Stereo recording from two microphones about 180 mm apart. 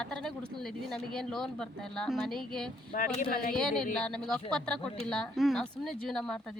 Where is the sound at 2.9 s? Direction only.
50° left (ahead or behind).